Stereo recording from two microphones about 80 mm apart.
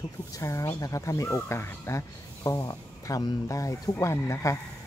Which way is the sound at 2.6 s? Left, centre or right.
Left.